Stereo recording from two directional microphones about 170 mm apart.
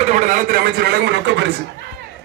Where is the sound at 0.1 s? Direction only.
45° right (ahead or behind); by 1.5 s 90° right.